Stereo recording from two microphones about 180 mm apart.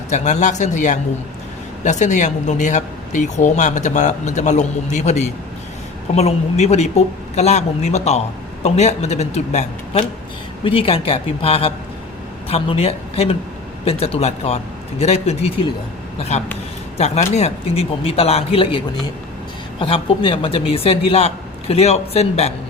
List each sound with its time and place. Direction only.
0.1 s speech: 40° left (ahead or behind)
19.8 s speech: 30° left (ahead or behind)